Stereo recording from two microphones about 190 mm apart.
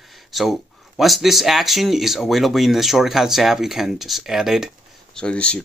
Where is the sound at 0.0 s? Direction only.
Centre (ahead or behind).